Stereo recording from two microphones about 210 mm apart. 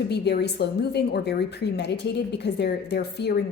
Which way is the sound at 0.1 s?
50° left (ahead or behind).